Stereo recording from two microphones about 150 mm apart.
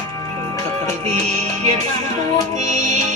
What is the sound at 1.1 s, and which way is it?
Music, 50° right (ahead or behind).